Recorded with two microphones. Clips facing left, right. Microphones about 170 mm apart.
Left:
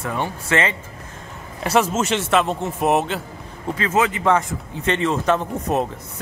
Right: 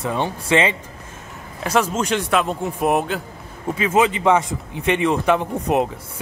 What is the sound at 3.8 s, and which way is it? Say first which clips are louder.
A man's voice: right 3 dB; 15° right (ahead or behind).